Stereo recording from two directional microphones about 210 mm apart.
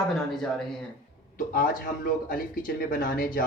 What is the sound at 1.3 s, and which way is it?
Speech, 40° left (ahead or behind).